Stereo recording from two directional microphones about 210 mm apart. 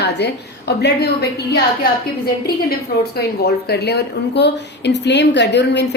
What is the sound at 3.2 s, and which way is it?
A woman's voice, 50° left (ahead or behind).